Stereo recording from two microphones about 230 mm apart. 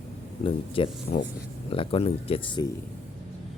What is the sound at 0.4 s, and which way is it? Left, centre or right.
Speech, left.